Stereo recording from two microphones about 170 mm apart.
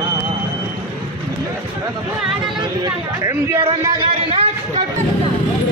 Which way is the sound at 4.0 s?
35° right (ahead or behind).